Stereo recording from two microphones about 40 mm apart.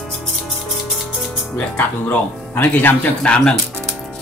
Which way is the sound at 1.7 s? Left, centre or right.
Left.